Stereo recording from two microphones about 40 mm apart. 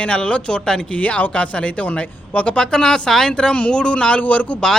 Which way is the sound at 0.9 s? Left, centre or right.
Left.